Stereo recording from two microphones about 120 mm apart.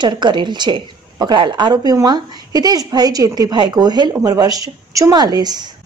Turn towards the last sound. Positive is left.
turn(degrees=-35)  # may be behind; listen again after turning